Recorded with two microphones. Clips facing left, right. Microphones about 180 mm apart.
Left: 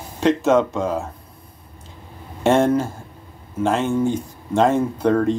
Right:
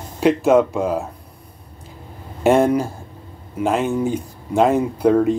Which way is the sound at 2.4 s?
15° right (ahead or behind).